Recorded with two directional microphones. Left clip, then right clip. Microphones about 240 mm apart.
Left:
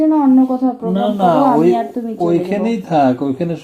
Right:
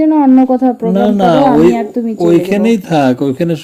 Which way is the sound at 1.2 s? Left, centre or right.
Right.